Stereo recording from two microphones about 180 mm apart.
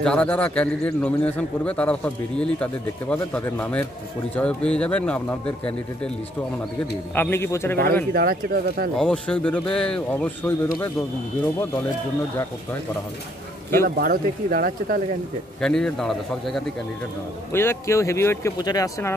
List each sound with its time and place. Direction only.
0.0 s a man's voice: 5° left (ahead or behind)
7.2 s a man's voice: 15° left (ahead or behind)
8.1 s speech: 55° right (ahead or behind)
8.9 s a man's voice: 5° left (ahead or behind)
13.8 s speech: 55° right (ahead or behind)
15.6 s a man's voice: 5° left (ahead or behind)
17.5 s a man's voice: 15° left (ahead or behind)